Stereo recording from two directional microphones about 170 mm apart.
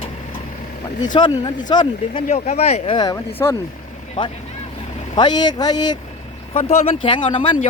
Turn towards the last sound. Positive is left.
turn(degrees=30)  # may be behind; listen again after turning